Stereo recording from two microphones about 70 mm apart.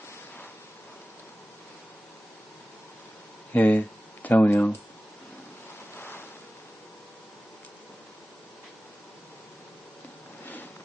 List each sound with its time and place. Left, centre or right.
3.5 s speech: left
6.0 s waves: left
10.4 s a sound: left